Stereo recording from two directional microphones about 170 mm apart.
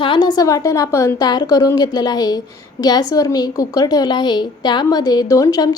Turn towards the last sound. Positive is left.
turn(degrees=20)  # may be behind; listen again after turning